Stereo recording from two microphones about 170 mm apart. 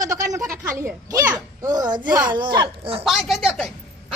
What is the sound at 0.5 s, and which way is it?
Speech, 15° right (ahead or behind).